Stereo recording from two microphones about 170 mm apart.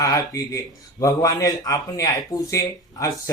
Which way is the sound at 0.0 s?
20° left (ahead or behind).